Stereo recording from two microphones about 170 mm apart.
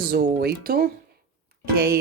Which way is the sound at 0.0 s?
70° right (ahead or behind).